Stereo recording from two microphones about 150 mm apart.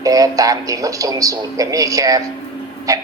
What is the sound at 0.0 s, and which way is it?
A man's voice, 25° right (ahead or behind).